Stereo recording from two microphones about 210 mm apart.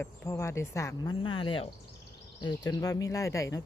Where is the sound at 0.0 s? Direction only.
15° left (ahead or behind).